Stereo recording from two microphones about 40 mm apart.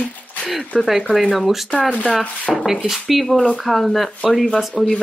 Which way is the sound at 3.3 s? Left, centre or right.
Centre.